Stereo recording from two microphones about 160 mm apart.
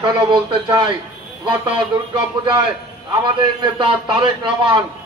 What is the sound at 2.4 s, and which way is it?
A man's voice, 25° right (ahead or behind).